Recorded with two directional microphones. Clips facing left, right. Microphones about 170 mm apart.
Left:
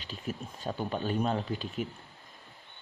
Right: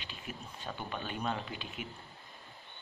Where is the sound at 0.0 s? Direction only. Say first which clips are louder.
Left 7 dB; 40° left (ahead or behind).